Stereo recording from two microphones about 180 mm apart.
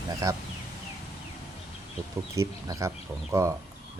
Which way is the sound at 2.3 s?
15° right (ahead or behind).